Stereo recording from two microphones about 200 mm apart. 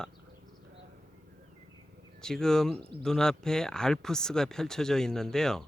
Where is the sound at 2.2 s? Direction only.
5° left (ahead or behind).